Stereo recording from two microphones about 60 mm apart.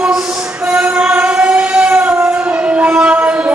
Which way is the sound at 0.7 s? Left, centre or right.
Centre.